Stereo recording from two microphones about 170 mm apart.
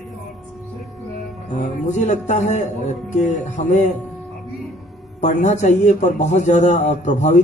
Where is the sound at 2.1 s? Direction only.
45° left (ahead or behind).